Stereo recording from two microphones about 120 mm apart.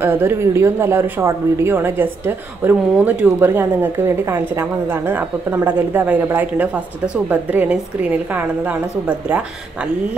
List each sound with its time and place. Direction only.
0.0 s a woman's voice: 20° right (ahead or behind)